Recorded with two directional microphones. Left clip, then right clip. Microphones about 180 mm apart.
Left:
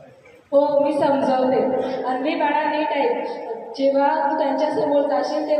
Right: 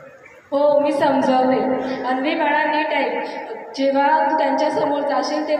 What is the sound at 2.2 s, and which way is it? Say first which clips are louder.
A woman's voice: right 2 dB; 55° right (ahead or behind).